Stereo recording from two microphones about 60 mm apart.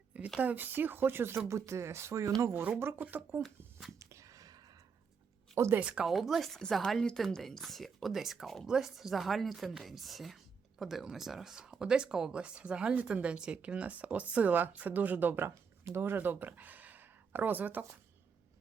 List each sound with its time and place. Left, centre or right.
0.3 s speech: right
1.5 s speech: right
2.5 s speech: right
3.4 s a woman's voice: centre
3.9 s a sound: right
5.8 s speech: centre
6.1 s a woman's voice: centre; by 15.4 s right
15.4 s speech: right